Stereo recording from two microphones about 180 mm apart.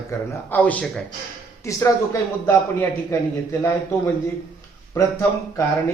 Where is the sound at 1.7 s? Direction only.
15° left (ahead or behind).